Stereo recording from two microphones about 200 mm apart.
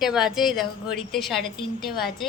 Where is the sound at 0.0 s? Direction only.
5° right (ahead or behind).